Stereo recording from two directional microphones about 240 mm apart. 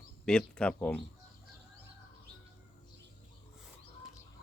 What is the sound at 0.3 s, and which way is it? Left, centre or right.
Speech, centre.